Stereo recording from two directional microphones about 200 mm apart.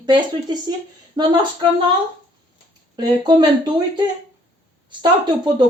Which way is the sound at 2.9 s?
20° right (ahead or behind).